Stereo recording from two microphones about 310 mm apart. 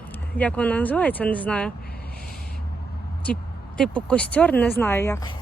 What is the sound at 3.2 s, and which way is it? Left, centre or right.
Speech, centre.